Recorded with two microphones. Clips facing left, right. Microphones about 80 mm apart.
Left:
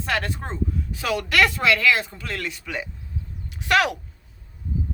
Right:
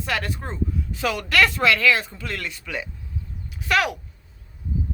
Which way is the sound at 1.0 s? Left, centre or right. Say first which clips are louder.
Even; centre.